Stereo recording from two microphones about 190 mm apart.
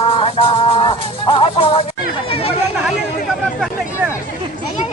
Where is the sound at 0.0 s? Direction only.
30° left (ahead or behind).